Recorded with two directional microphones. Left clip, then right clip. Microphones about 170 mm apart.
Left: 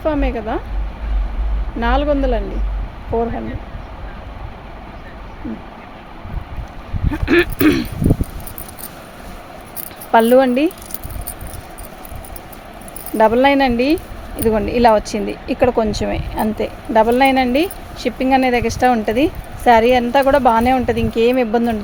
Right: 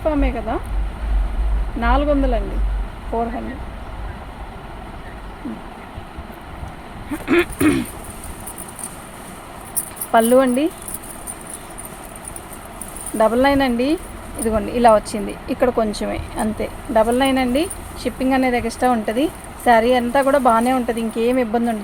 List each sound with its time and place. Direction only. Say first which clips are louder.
0.0 s speech: left 1 dB; 60° left (ahead or behind)
1.8 s speech: left 1 dB; 65° left (ahead or behind)
7.1 s speech: left 3 dB; 55° left (ahead or behind)
10.1 s speech: left 3 dB; 50° left (ahead or behind)
13.1 s speech: left 3 dB; 45° left (ahead or behind)